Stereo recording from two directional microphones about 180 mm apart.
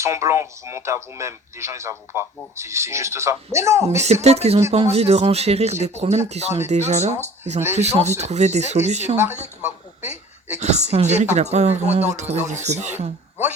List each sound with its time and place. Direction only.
0.0 s speech: 15° right (ahead or behind)
4.0 s speech: 35° right (ahead or behind)
9.4 s speech: 10° right (ahead or behind)
10.6 s speech: 40° right (ahead or behind)